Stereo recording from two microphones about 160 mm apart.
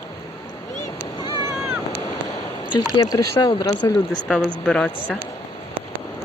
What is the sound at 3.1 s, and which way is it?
Speech, 30° left (ahead or behind).